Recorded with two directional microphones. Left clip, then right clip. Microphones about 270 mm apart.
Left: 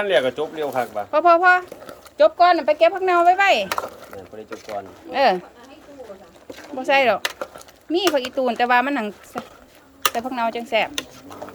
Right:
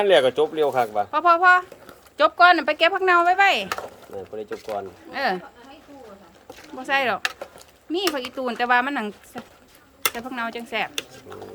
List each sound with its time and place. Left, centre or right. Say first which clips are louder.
0.0 s speech: right 2 dB; right
1.1 s speech: left 2 dB; centre
5.1 s speech: left 7 dB; centre
6.7 s speech: left 5 dB; centre
10.2 s speech: left 6 dB; centre